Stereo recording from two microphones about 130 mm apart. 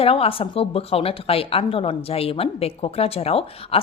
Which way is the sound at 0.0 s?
50° left (ahead or behind).